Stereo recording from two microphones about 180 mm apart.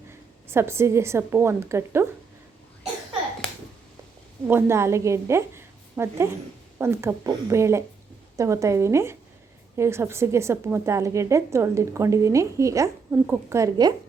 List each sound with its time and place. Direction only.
0.4 s a woman's voice: 15° right (ahead or behind)
4.4 s a woman's voice: 15° right (ahead or behind)